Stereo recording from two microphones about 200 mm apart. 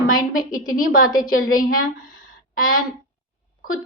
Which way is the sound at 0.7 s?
45° left (ahead or behind).